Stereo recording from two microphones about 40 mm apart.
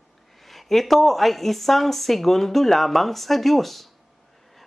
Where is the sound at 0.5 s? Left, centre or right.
Centre.